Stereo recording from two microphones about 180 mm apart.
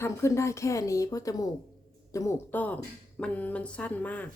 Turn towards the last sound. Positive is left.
turn(degrees=10)  # may be behind; listen again after turning